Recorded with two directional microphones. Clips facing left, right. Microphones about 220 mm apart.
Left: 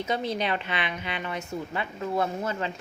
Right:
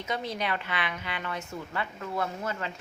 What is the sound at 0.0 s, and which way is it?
A woman's voice, 30° left (ahead or behind).